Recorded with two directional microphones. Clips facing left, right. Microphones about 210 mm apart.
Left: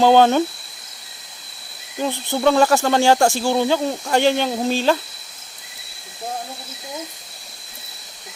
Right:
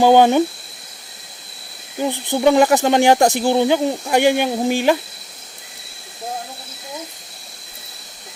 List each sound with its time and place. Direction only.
0.0 s speech: 15° right (ahead or behind)
2.0 s speech: 15° right (ahead or behind)